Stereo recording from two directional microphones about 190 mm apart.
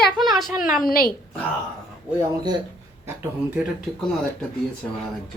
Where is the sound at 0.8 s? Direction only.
50° left (ahead or behind).